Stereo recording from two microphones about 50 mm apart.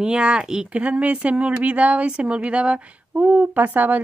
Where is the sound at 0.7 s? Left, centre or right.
Right.